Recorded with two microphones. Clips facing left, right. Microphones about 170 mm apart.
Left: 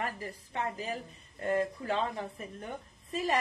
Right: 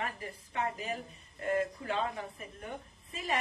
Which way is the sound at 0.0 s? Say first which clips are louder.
Left 2 dB; 35° left (ahead or behind).